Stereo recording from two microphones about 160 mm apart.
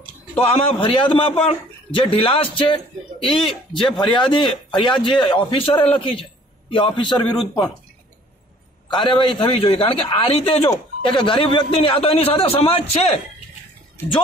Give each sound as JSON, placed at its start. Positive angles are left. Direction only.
{"t": 0.4, "sound": "a man's voice", "side_deg": 35}
{"t": 8.9, "sound": "a man's voice", "side_deg": 30}